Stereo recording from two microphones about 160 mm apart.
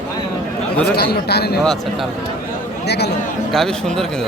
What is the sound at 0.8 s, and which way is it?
Speech, 85° left.